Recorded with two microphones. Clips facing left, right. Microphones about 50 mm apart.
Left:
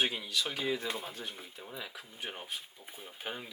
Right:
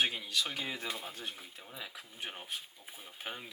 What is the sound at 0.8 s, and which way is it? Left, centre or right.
Speech, centre.